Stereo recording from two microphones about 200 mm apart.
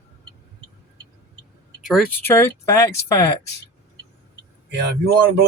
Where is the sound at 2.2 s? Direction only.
10° left (ahead or behind).